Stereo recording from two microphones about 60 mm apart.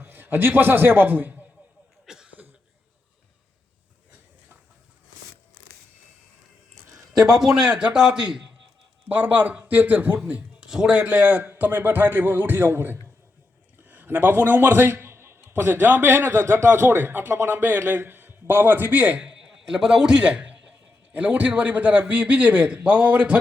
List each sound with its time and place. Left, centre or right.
0.0 s a man's voice: right
2.0 s cough: centre
7.3 s a man's voice: centre
9.0 s a man's voice: right
10.2 s a sound: centre
10.7 s a man's voice: centre
10.9 s a man's voice: right
13.8 s a sound: right
15.4 s a man's voice: right
19.2 s a sound: centre
21.2 s a man's voice: right